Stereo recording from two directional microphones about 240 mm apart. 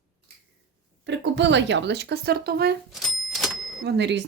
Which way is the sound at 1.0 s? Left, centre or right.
Right.